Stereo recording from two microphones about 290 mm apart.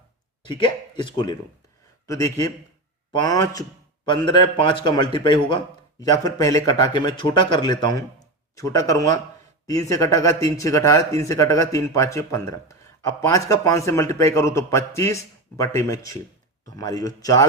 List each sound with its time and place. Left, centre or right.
0.4 s speech: centre